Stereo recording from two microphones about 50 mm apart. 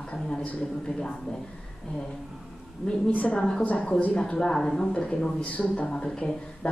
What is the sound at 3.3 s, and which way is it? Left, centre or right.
A woman's voice, centre.